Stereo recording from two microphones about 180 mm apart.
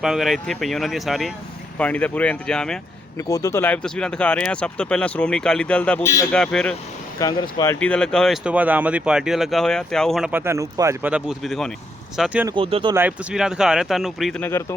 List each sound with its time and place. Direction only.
0.0 s speech: centre (ahead or behind)
3.2 s speech: 20° left (ahead or behind)
6.3 s speech: 5° left (ahead or behind)
7.2 s speech: 20° left (ahead or behind)
7.8 s speech: 5° left (ahead or behind); by 11.1 s 15° right (ahead or behind)
11.1 s speech: centre (ahead or behind)
12.5 s speech: 30° right (ahead or behind)
12.9 s speech: 10° right (ahead or behind)
14.4 s speech: 15° left (ahead or behind)